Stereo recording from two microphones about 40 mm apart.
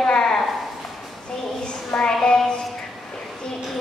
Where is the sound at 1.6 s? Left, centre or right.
Left.